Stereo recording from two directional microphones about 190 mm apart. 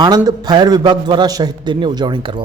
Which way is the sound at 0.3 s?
20° right (ahead or behind).